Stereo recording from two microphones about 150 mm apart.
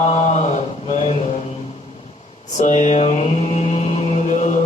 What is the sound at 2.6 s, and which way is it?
Mantra, 55° left (ahead or behind).